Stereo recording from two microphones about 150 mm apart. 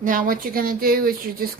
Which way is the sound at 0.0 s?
65° right (ahead or behind).